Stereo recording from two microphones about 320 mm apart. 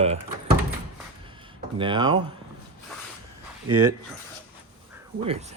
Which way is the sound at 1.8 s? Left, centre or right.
Centre.